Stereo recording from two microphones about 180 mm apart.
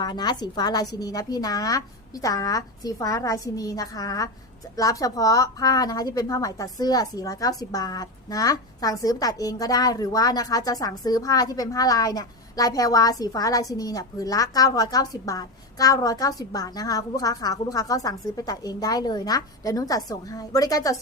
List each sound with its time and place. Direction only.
0.0 s a woman's voice: 25° left (ahead or behind)